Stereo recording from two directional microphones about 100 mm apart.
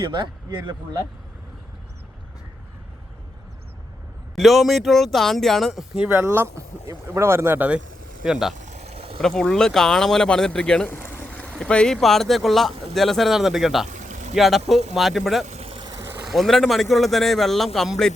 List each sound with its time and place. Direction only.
0.0 s a man's voice: 50° right (ahead or behind)
4.4 s speech: centre (ahead or behind)
6.1 s speech: 20° right (ahead or behind)
8.2 s speech: 5° right (ahead or behind)
8.8 s a sound: 90° right
9.2 s speech: 5° left (ahead or behind)
10.8 s vehicle: 20° left (ahead or behind)
11.3 s speech: 10° left (ahead or behind)
15.5 s vehicle: 75° right (ahead or behind)
15.8 s vehicle: 40° right (ahead or behind)
16.2 s speech: centre (ahead or behind)